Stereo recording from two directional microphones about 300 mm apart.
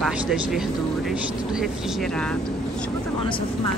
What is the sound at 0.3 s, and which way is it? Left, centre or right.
Speech, centre.